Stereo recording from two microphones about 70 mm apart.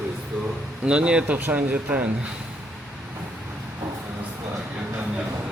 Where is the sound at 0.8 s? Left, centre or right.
Centre.